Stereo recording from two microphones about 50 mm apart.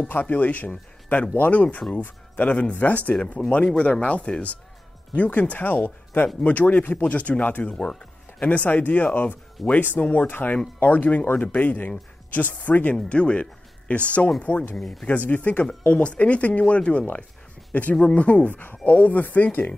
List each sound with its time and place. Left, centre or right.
0.1 s speech: left
12.9 s speech: left
14.8 s speech: centre
15.0 s speech: left